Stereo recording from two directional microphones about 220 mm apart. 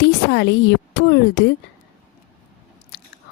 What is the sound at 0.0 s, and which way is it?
A woman's voice, 50° left (ahead or behind).